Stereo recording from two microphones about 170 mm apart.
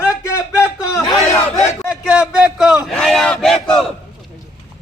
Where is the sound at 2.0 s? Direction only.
5° right (ahead or behind).